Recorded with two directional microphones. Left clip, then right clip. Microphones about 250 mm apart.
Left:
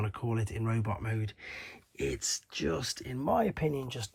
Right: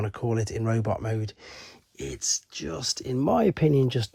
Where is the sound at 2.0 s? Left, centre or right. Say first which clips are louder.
Right 4 dB; centre.